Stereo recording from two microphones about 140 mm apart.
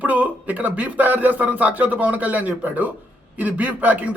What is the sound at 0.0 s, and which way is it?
A man's voice, 10° right (ahead or behind).